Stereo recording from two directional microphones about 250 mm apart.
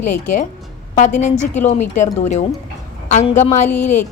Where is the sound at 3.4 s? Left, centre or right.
Left.